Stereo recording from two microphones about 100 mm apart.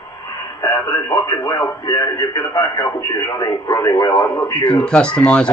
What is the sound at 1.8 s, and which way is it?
Speech, 35° left (ahead or behind).